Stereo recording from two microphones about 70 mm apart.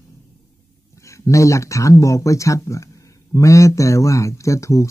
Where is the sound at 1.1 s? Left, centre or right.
Left.